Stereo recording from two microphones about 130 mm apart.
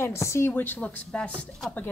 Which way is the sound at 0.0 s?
20° left (ahead or behind).